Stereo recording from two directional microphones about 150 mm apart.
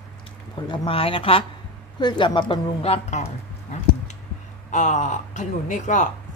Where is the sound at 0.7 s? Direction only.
35° left (ahead or behind).